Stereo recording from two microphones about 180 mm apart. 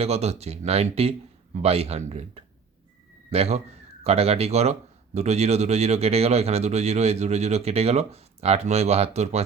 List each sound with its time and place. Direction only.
0.0 s a man's voice: 35° right (ahead or behind)